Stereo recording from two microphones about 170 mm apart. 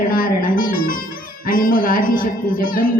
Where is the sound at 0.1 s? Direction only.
55° left (ahead or behind).